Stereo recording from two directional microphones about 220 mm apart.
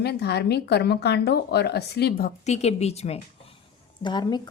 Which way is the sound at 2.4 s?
30° left (ahead or behind).